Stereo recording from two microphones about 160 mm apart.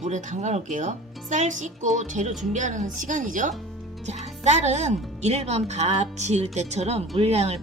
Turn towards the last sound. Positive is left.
turn(degrees=-40)  # may be behind; listen again after turning